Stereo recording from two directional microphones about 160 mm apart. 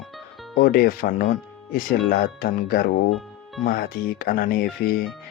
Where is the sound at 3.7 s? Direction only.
65° left (ahead or behind).